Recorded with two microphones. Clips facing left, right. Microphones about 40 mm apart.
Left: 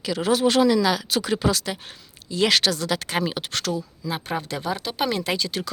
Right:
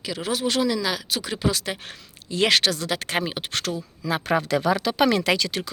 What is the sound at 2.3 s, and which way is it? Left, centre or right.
Speech, right.